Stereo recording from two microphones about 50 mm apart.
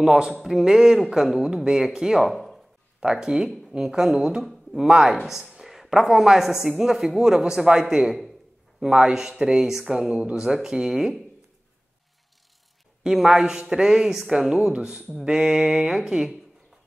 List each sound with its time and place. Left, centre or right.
0.0 s speech: centre
2.2 s speech: centre
3.0 s speech: centre
13.0 s speech: centre